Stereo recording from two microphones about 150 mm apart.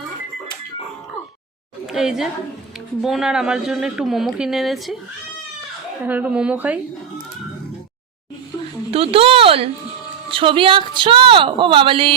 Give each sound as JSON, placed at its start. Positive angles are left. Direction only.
{"t": 1.9, "sound": "a woman's voice", "side_deg": -5}
{"t": 6.1, "sound": "a woman's voice", "side_deg": -10}
{"t": 8.9, "sound": "a woman's voice", "side_deg": -40}